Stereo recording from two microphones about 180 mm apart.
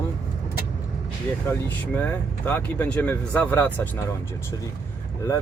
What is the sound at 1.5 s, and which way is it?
Speech, 10° left (ahead or behind).